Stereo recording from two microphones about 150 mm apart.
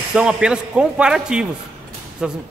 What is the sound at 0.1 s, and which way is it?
A man's voice, 5° right (ahead or behind).